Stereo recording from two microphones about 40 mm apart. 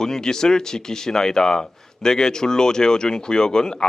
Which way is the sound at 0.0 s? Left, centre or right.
Centre.